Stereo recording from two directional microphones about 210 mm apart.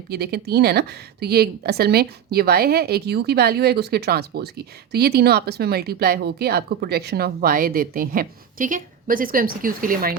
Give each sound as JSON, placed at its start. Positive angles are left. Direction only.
{"t": 0.1, "sound": "a woman's voice", "side_deg": -50}